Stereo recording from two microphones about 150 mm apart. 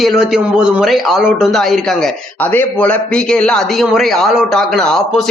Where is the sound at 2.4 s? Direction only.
10° left (ahead or behind).